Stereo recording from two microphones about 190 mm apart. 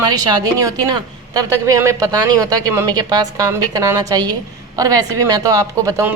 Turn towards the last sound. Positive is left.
turn(degrees=-15)  # may be behind; listen again after turning